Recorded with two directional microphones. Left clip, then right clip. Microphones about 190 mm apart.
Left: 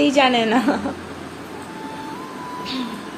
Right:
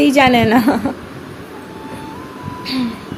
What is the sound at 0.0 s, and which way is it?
Speech, 40° right (ahead or behind).